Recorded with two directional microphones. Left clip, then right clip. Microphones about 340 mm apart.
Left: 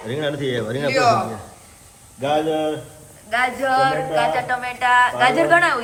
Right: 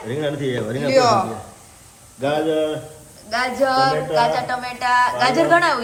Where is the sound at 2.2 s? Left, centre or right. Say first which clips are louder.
Even; centre.